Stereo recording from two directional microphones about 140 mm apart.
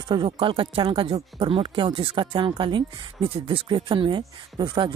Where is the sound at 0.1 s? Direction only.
35° right (ahead or behind).